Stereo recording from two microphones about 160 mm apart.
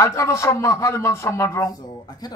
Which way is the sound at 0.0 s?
15° left (ahead or behind).